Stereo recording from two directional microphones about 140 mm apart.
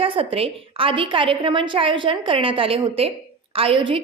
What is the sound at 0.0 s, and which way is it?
A woman's voice, 40° right (ahead or behind).